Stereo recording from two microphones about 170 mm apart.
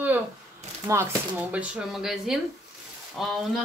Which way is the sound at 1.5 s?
5° right (ahead or behind).